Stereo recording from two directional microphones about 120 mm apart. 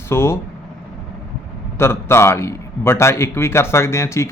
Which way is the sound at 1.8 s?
20° left (ahead or behind).